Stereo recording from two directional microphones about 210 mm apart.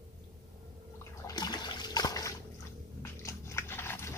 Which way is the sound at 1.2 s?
20° left (ahead or behind).